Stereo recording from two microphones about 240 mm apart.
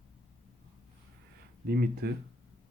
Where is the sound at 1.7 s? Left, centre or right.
Right.